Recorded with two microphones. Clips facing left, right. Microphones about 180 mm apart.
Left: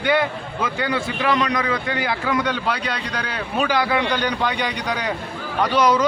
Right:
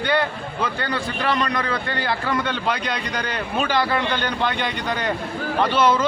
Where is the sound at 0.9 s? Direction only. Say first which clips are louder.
Left 3 dB; centre (ahead or behind).